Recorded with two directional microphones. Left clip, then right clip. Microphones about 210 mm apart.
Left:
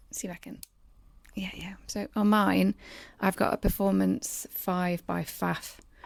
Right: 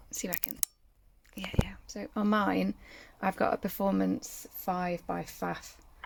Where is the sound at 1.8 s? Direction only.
20° left (ahead or behind); by 5.9 s 35° left (ahead or behind).